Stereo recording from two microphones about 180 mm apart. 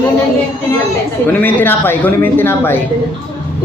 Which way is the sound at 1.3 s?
10° left (ahead or behind).